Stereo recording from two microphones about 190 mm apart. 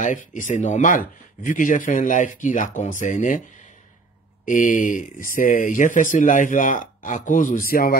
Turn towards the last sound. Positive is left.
turn(degrees=50)  # may be behind; listen again after turning